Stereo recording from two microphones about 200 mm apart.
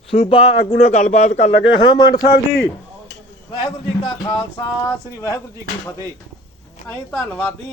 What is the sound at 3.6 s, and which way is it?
Speech, 25° left (ahead or behind).